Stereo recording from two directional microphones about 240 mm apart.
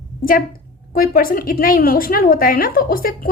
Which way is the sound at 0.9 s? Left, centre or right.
Left.